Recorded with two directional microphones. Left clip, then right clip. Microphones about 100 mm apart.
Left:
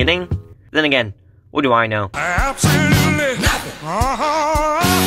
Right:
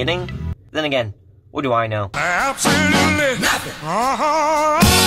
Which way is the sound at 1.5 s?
25° left (ahead or behind).